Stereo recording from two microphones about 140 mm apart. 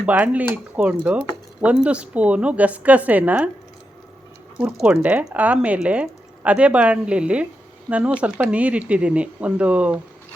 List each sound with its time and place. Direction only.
0.0 s speech: 10° right (ahead or behind)
4.5 s speech: 5° right (ahead or behind)